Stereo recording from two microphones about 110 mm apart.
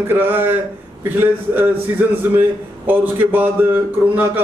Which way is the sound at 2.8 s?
15° right (ahead or behind).